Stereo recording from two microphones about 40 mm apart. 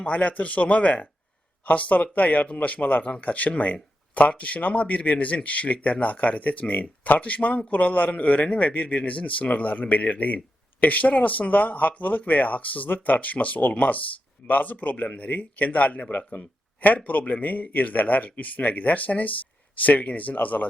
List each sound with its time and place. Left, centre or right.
0.0 s a man's voice: left